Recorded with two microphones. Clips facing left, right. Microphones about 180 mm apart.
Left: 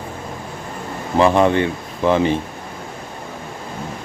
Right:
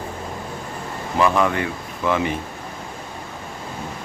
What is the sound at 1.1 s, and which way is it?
Speech, 30° left (ahead or behind).